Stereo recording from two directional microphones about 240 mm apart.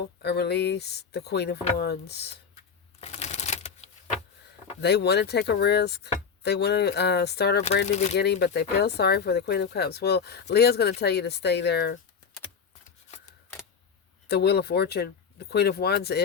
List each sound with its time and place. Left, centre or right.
0.0 s speech: left
3.0 s typewriter: left
4.8 s speech: left
14.3 s speech: left